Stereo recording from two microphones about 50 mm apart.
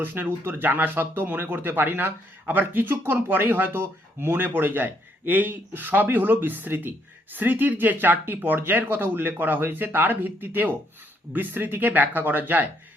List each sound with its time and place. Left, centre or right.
0.0 s speech: right